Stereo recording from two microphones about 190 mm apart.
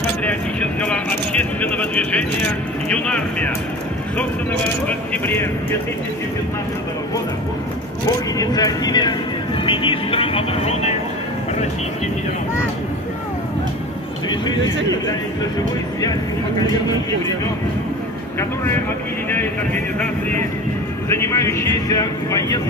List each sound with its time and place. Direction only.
0.2 s a sound: 5° left (ahead or behind)
2.9 s speech: 5° left (ahead or behind)
4.8 s speech: 10° left (ahead or behind)
8.4 s speech: 20° left (ahead or behind)
16.0 s speech: 20° left (ahead or behind)
21.1 s speech: 15° left (ahead or behind)